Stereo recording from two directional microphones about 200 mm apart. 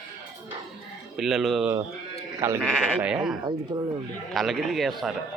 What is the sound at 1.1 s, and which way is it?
Speech, centre (ahead or behind).